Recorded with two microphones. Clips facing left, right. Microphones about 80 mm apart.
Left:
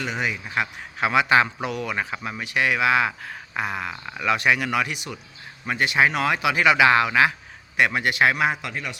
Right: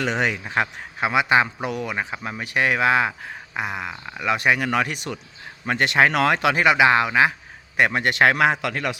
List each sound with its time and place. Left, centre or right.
0.0 s speech: right
0.6 s speech: right
0.9 s speech: right
2.4 s speech: right
3.1 s speech: centre
4.4 s speech: right
6.6 s speech: right
7.8 s speech: right
8.6 s a man's voice: right